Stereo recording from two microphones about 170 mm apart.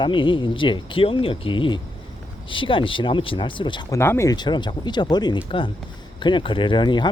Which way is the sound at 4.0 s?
15° left (ahead or behind).